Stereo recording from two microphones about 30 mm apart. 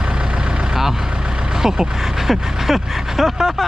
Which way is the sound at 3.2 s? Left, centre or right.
Centre.